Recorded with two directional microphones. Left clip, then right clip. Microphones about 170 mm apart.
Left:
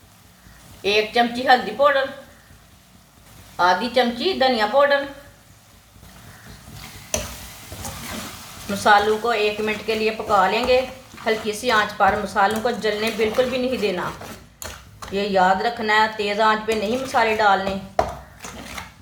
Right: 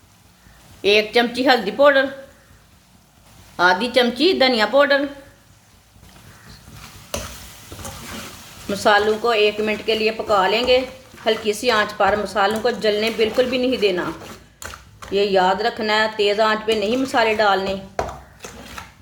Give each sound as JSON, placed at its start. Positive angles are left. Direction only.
{"t": 0.8, "sound": "a woman's voice", "side_deg": -65}
{"t": 3.6, "sound": "a woman's voice", "side_deg": -65}
{"t": 8.7, "sound": "a woman's voice", "side_deg": -50}
{"t": 15.1, "sound": "a woman's voice", "side_deg": -50}